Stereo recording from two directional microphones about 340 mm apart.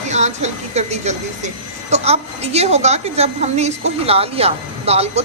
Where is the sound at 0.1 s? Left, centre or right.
Centre.